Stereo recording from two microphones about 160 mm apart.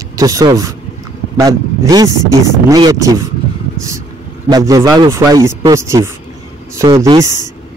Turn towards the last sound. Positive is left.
turn(degrees=-20)  # may be behind; listen again after turning